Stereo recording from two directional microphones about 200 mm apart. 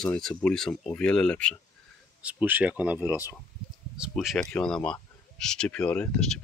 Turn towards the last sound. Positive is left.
turn(degrees=5)  # may be behind; listen again after turning